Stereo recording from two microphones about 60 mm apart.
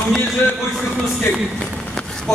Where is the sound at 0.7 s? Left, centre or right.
Centre.